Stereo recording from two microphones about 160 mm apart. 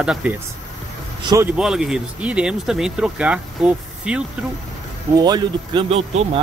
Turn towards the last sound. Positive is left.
turn(degrees=-40)  # may be behind; listen again after turning